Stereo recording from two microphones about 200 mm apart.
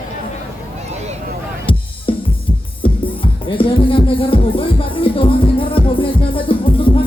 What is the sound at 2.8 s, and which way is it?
Music, 25° left (ahead or behind).